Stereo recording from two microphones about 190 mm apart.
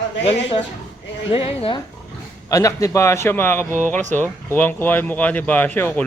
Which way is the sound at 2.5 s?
15° left (ahead or behind).